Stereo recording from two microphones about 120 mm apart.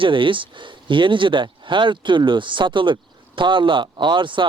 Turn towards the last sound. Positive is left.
turn(degrees=-40)  # may be behind; listen again after turning